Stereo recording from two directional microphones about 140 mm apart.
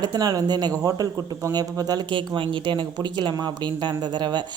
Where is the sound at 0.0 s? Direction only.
30° right (ahead or behind).